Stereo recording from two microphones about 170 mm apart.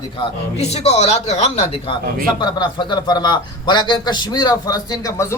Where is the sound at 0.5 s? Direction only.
40° left (ahead or behind).